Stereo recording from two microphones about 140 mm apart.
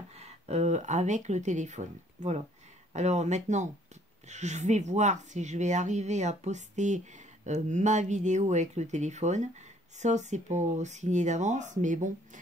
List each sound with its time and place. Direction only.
0.2 s speech: 50° right (ahead or behind)